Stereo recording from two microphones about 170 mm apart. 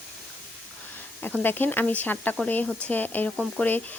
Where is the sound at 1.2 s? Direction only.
10° left (ahead or behind).